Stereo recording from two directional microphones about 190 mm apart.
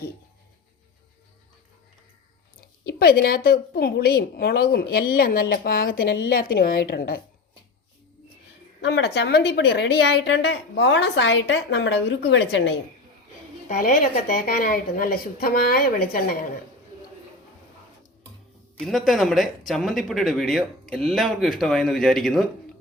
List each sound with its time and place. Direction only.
2.6 s a woman's voice: 55° left (ahead or behind)
8.8 s a woman's voice: 60° left (ahead or behind)
13.7 s a woman's voice: 50° left (ahead or behind)
18.8 s speech: centre (ahead or behind)